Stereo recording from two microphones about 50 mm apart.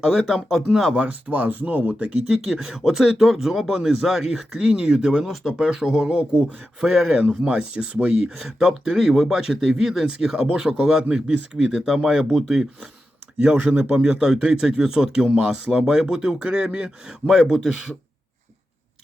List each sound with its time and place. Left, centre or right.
0.7 s speech: centre
0.9 s speech: right
2.4 s speech: centre
4.4 s speech: centre
6.8 s speech: centre
7.2 s speech: right
11.9 s speech: centre
12.3 s speech: centre
13.6 s speech: right
14.0 s speech: centre